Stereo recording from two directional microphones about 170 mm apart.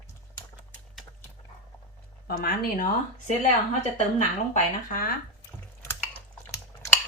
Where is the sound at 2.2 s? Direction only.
60° left (ahead or behind).